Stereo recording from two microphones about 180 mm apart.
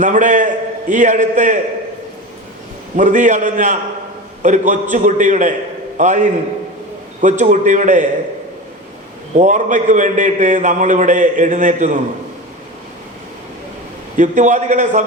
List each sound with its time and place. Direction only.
0.0 s a man's voice: 45° right (ahead or behind)
2.9 s a man's voice: 45° right (ahead or behind)
9.3 s a man's voice: 45° right (ahead or behind)
14.2 s a man's voice: 45° right (ahead or behind)